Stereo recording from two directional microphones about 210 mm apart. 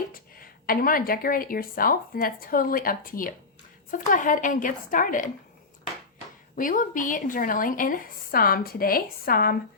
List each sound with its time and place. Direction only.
0.1 s a woman's voice: 45° left (ahead or behind)
6.6 s a woman's voice: 40° left (ahead or behind)